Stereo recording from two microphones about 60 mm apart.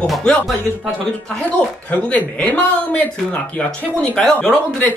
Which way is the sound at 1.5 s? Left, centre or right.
Left.